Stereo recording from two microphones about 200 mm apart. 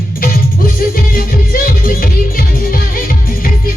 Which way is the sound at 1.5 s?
45° left (ahead or behind).